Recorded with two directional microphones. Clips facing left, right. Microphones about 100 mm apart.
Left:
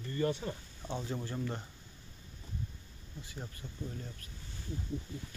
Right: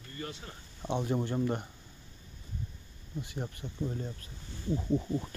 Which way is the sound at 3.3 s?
25° right (ahead or behind).